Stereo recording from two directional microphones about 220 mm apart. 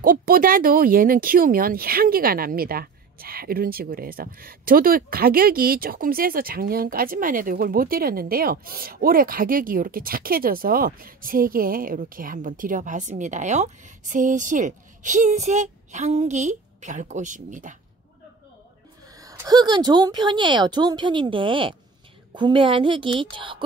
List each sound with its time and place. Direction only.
0.0 s speech: 40° right (ahead or behind)
19.1 s a woman's voice: 15° right (ahead or behind)